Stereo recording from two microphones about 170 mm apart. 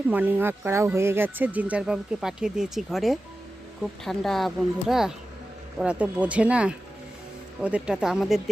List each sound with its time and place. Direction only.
0.1 s speech: 10° right (ahead or behind)